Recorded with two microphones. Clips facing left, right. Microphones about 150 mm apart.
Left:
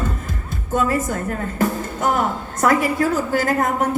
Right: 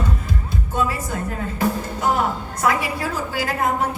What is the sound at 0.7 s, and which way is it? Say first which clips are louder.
Speech: left 5 dB; 45° left (ahead or behind).